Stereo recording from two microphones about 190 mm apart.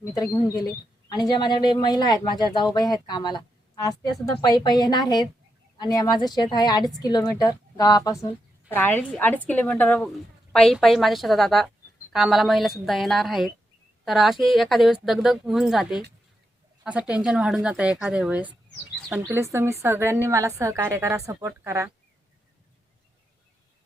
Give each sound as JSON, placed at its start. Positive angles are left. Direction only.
{"t": 0.1, "sound": "a woman's voice", "side_deg": 20}